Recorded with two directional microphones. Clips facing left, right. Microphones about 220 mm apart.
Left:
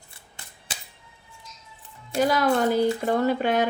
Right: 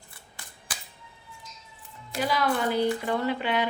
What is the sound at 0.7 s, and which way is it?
Music, 25° left (ahead or behind).